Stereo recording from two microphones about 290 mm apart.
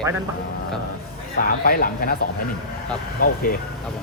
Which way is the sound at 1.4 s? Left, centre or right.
Left.